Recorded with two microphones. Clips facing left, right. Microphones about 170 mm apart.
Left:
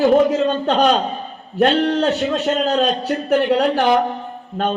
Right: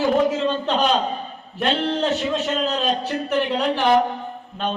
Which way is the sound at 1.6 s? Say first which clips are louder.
Left 6 dB; 45° left (ahead or behind).